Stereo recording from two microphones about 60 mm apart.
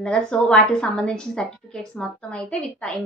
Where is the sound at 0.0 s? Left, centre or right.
Centre.